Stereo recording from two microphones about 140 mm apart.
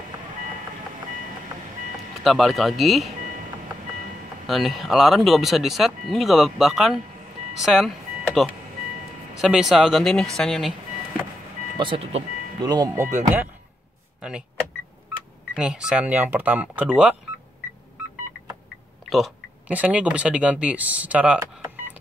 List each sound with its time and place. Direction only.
2.2 s speech: centre (ahead or behind)
4.5 s speech: centre (ahead or behind)
11.8 s speech: 40° right (ahead or behind)
12.5 s speech: 30° right (ahead or behind)
15.5 s speech: 5° right (ahead or behind)
19.0 s speech: centre (ahead or behind)
19.7 s speech: 10° right (ahead or behind)